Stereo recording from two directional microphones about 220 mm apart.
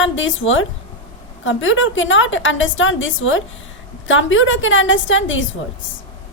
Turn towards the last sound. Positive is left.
turn(degrees=60)  # may be behind; listen again after turning